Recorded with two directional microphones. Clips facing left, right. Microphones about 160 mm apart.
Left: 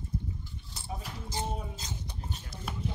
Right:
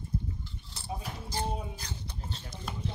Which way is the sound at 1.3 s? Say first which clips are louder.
Right 1 dB; 20° left (ahead or behind).